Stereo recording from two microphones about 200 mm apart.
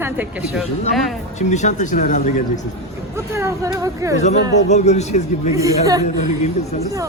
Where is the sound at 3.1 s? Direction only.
15° right (ahead or behind).